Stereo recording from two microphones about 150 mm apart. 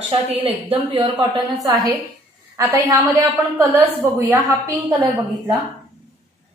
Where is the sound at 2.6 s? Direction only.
20° right (ahead or behind).